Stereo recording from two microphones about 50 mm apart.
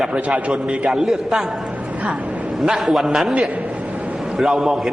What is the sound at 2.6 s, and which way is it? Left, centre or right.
A man's voice, centre.